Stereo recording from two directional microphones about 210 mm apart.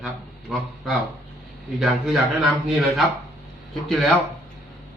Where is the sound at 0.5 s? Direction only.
Centre (ahead or behind).